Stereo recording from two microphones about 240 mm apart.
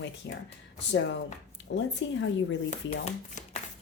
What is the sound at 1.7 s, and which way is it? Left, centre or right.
Speech, left.